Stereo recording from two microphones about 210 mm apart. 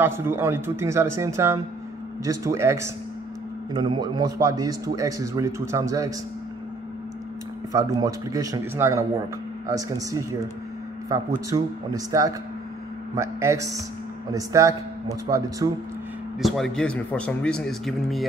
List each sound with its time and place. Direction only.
0.0 s a man's voice: 10° right (ahead or behind)
7.7 s a man's voice: 15° right (ahead or behind)
11.5 s a man's voice: 15° right (ahead or behind)
16.3 s speech: centre (ahead or behind)